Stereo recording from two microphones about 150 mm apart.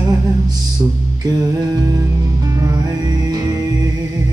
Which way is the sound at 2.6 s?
25° right (ahead or behind).